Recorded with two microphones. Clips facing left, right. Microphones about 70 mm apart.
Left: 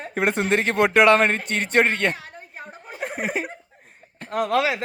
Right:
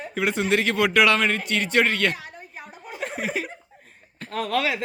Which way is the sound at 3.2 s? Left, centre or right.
Left.